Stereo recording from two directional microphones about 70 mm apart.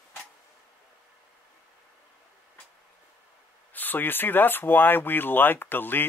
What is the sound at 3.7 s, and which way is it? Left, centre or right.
Speech, left.